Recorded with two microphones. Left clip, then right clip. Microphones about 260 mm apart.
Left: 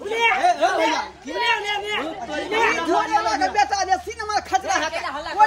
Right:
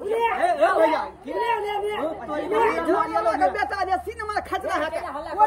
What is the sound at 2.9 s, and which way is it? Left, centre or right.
Speech, centre.